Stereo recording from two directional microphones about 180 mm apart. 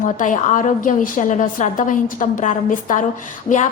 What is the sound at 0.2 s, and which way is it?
A woman's voice, 45° left (ahead or behind).